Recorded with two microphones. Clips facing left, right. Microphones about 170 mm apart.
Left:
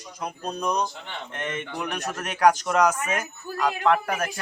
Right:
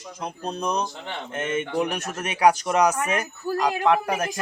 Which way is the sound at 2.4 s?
10° right (ahead or behind).